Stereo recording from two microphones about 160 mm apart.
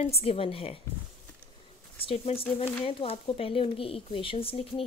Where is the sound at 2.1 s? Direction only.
35° left (ahead or behind).